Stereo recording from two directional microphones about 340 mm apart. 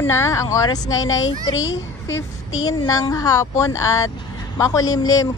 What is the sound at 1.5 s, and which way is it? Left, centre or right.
Speech, left.